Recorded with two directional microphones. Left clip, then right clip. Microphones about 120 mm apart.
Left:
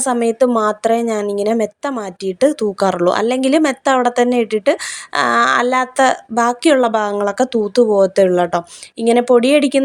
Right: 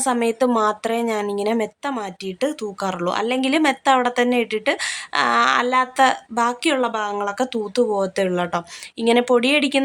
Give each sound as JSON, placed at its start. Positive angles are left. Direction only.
{"t": 0.0, "sound": "a woman's voice", "side_deg": 30}